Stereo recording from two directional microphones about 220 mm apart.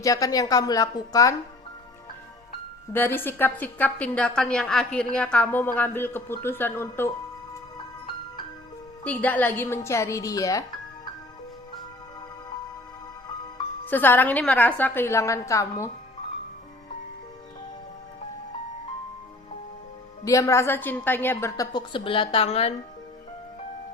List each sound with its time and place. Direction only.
0.0 s a woman's voice: 15° left (ahead or behind)
2.9 s a woman's voice: 10° left (ahead or behind)
9.0 s a woman's voice: 10° left (ahead or behind)
13.8 s a woman's voice: 10° left (ahead or behind)
20.2 s a woman's voice: 15° left (ahead or behind)